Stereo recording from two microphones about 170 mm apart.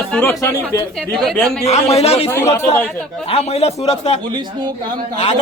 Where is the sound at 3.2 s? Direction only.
35° left (ahead or behind).